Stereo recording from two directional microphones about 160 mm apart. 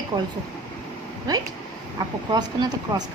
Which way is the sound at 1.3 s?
25° right (ahead or behind).